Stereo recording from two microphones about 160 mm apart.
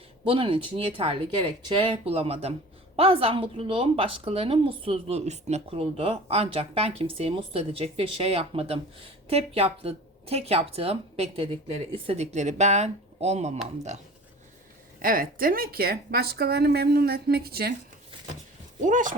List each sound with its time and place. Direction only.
0.3 s a woman's voice: 35° right (ahead or behind)
14.9 s speech: 60° right (ahead or behind)
18.8 s speech: 55° right (ahead or behind)